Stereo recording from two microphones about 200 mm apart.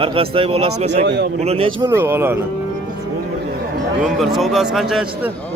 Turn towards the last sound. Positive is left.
turn(degrees=0)  # may be behind; listen again after turning